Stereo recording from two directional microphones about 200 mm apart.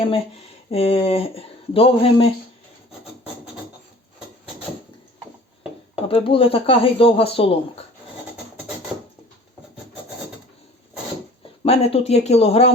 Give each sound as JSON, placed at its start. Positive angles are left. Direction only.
{"t": 0.7, "sound": "speech", "side_deg": 30}
{"t": 6.1, "sound": "speech", "side_deg": 30}
{"t": 11.6, "sound": "speech", "side_deg": 30}